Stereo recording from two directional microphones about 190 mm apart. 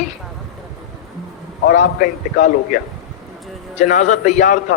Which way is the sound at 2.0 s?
45° left (ahead or behind).